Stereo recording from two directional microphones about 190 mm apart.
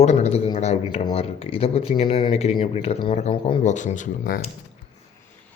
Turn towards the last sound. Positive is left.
turn(degrees=45)  # may be behind; listen again after turning